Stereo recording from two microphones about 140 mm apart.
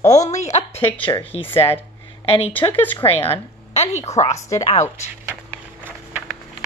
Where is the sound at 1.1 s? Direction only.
15° left (ahead or behind).